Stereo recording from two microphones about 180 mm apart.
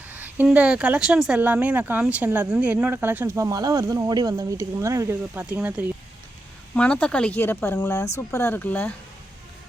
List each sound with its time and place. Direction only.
0.1 s speech: 10° right (ahead or behind)
6.7 s speech: 5° left (ahead or behind)